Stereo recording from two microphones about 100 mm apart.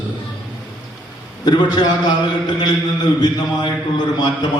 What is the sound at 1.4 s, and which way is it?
Mantra, 45° left (ahead or behind).